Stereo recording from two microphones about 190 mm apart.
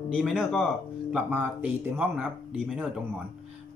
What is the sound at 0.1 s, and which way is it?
Speech, centre (ahead or behind).